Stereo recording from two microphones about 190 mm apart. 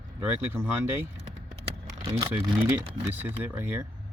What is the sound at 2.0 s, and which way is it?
Speech, 20° right (ahead or behind).